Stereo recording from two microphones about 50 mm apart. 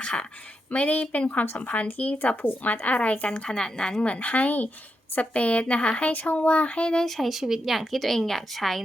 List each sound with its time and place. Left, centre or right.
0.0 s speech: centre
0.7 s a child's voice: left
3.5 s a child's voice: centre
6.9 s a woman's voice: centre